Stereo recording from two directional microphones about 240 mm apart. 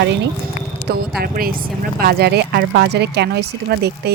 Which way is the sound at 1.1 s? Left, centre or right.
Right.